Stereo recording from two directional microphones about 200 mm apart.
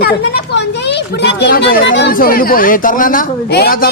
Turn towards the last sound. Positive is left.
turn(degrees=50)  # may be behind; listen again after turning